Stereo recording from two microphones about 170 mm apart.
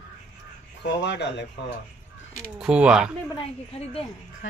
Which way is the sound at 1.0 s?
90° left.